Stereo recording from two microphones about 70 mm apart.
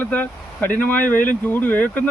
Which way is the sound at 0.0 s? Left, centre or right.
Left.